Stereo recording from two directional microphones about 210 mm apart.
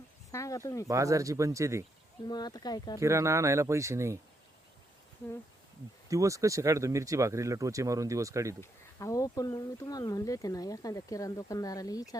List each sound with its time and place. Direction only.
0.3 s speech: 15° left (ahead or behind)
0.9 s speech: 15° right (ahead or behind)
2.2 s speech: 20° left (ahead or behind)
3.0 s speech: 15° right (ahead or behind)
6.1 s speech: 15° right (ahead or behind)
8.6 s speech: 15° left (ahead or behind)